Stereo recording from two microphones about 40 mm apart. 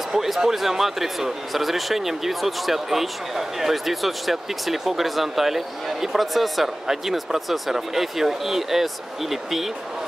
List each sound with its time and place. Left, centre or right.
0.1 s speech: centre